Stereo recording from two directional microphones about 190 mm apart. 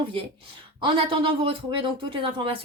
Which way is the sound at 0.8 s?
25° right (ahead or behind).